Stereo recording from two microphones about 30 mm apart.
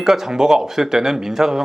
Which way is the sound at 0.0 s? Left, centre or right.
Right.